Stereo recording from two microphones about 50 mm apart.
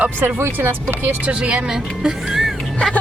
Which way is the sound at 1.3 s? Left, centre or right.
Centre.